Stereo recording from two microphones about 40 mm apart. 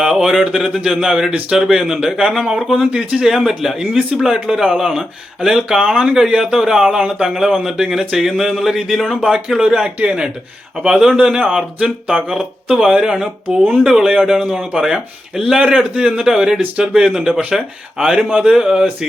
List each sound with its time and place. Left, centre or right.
0.0 s speech: centre
16.0 s speech: centre